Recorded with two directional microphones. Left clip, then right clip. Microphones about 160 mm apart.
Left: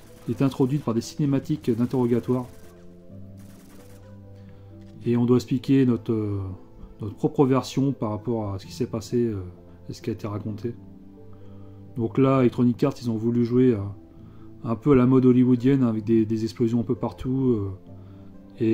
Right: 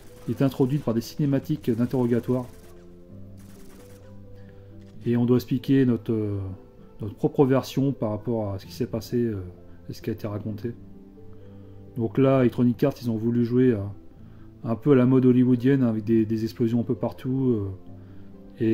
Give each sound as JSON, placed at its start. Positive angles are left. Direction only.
{"t": 0.2, "sound": "speech", "side_deg": -5}
{"t": 5.0, "sound": "speech", "side_deg": 0}
{"t": 12.0, "sound": "speech", "side_deg": -5}
{"t": 18.6, "sound": "music", "side_deg": -5}